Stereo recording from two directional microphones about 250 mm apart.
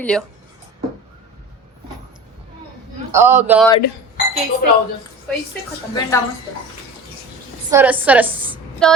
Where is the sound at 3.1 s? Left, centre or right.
Centre.